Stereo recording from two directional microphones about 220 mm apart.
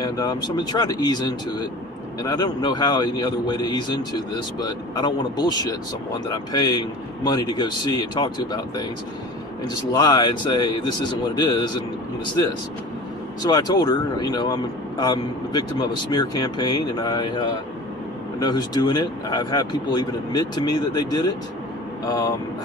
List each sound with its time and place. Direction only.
0.0 s speech: 15° left (ahead or behind)
9.9 s speech: 20° left (ahead or behind)
13.4 s speech: 15° left (ahead or behind)